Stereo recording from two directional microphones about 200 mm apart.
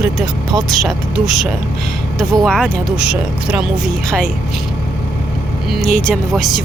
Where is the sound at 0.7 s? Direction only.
Centre (ahead or behind).